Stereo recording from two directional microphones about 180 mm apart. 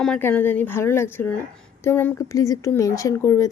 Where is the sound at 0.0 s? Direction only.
10° left (ahead or behind).